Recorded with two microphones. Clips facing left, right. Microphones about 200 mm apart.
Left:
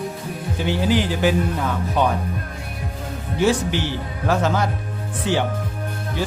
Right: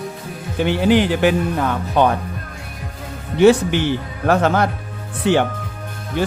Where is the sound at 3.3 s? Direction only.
60° right (ahead or behind).